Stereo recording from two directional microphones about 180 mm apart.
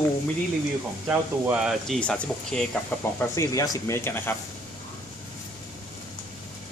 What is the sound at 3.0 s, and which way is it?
Speech, 15° left (ahead or behind).